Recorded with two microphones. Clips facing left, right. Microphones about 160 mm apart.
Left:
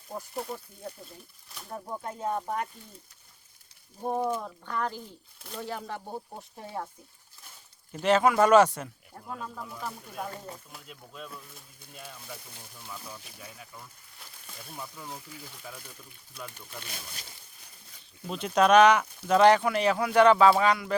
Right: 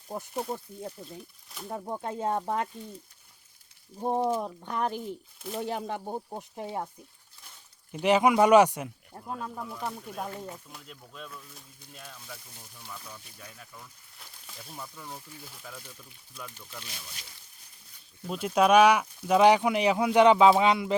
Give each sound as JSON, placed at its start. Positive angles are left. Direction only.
{"t": 1.9, "sound": "speech", "side_deg": -25}
{"t": 4.0, "sound": "speech", "side_deg": -25}
{"t": 8.0, "sound": "speech", "side_deg": -15}
{"t": 9.4, "sound": "speech", "side_deg": 0}
{"t": 16.5, "sound": "speech", "side_deg": 55}
{"t": 18.3, "sound": "speech", "side_deg": -5}